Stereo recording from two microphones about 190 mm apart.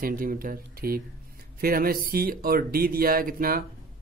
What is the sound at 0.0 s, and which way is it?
Speech, 45° right (ahead or behind).